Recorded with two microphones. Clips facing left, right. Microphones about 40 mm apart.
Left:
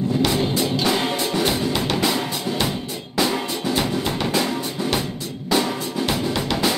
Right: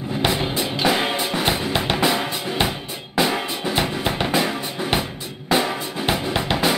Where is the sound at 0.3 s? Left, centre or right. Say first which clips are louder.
Left 2 dB; centre.